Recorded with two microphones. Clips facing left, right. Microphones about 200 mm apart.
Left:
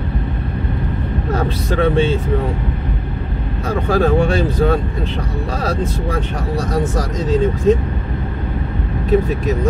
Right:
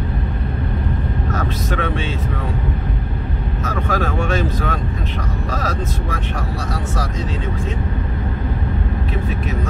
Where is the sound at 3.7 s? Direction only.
30° left (ahead or behind).